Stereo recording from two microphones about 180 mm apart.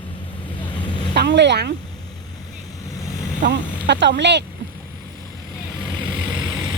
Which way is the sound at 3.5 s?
75° right (ahead or behind).